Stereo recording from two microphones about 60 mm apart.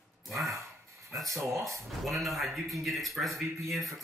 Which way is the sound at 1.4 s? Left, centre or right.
Right.